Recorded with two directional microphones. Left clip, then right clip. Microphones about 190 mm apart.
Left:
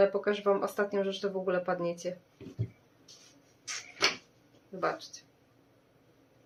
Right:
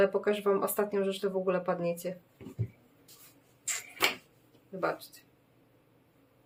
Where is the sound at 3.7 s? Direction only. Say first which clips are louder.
Right 2 dB; 15° right (ahead or behind).